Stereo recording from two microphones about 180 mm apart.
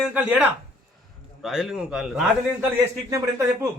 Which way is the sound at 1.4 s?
Centre (ahead or behind).